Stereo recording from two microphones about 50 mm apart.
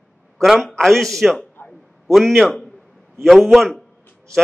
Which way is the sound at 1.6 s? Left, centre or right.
Left.